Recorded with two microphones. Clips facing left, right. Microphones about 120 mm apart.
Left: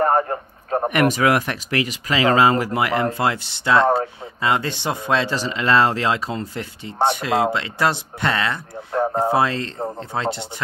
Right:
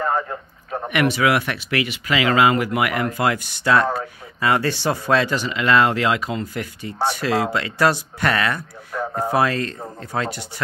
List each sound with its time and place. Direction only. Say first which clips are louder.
0.0 s speech: left 5 dB; 45° left (ahead or behind); by 10.4 s 25° left (ahead or behind)